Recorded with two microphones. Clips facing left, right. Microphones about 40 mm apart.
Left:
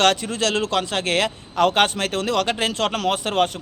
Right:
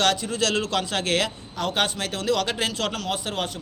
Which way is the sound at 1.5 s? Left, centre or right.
Left.